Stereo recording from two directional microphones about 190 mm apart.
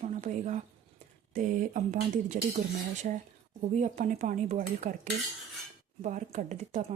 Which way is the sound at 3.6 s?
40° right (ahead or behind).